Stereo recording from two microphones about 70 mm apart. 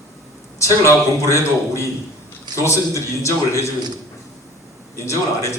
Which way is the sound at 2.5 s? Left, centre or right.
Left.